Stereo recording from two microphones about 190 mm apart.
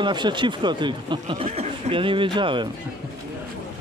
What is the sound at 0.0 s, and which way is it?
Speech, 25° right (ahead or behind).